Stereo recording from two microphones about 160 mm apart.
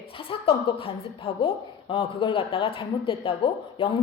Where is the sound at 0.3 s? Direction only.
35° left (ahead or behind).